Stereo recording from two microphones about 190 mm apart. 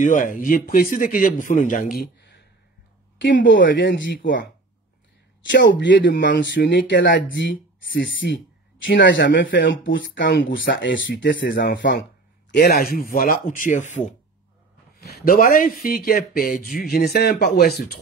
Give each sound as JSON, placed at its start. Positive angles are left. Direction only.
{"t": 0.0, "sound": "speech", "side_deg": 45}
{"t": 12.5, "sound": "speech", "side_deg": 55}
{"t": 15.0, "sound": "speech", "side_deg": 55}